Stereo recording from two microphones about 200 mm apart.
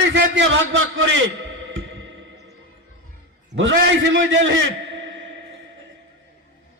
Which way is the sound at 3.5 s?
65° right (ahead or behind).